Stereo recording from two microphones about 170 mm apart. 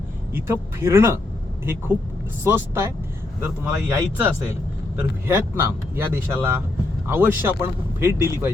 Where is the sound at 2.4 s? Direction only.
15° right (ahead or behind).